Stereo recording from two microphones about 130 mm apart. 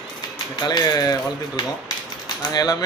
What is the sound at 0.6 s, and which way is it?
A man's voice, 30° left (ahead or behind).